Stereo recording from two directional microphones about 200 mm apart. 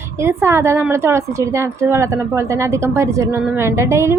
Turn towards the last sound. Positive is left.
turn(degrees=-15)  # may be behind; listen again after turning